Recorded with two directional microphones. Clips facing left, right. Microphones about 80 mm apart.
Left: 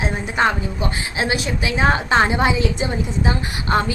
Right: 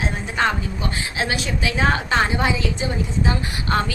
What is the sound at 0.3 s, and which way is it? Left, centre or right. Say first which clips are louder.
A woman's voice: left 3 dB; centre.